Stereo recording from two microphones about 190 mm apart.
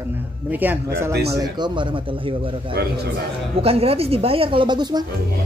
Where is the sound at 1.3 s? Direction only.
20° right (ahead or behind).